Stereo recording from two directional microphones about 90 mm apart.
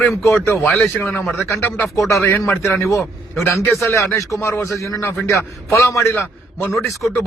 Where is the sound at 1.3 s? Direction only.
Centre (ahead or behind).